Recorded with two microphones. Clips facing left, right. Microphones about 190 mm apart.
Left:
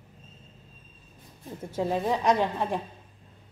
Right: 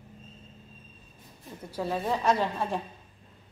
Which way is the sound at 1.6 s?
20° left (ahead or behind).